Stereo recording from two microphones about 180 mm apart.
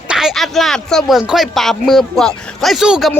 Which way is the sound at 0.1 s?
5° right (ahead or behind).